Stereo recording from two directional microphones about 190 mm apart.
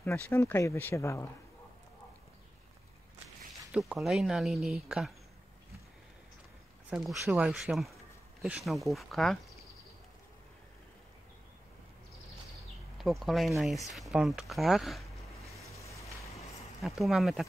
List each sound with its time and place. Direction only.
0.0 s speech: 10° left (ahead or behind)
3.7 s speech: centre (ahead or behind)
6.9 s speech: 5° right (ahead or behind)
12.9 s speech: centre (ahead or behind)
15.8 s vehicle: 15° left (ahead or behind)
17.0 s speech: centre (ahead or behind)